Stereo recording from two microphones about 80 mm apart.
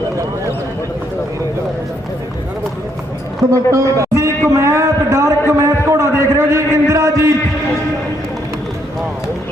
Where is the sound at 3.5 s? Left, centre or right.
Right.